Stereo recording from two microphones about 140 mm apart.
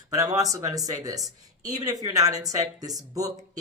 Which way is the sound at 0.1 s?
25° right (ahead or behind).